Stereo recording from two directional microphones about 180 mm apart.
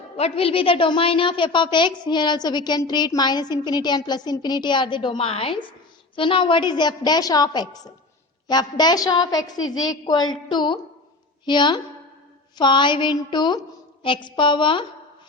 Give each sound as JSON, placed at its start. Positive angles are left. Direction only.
{"t": 0.2, "sound": "a woman's voice", "side_deg": 30}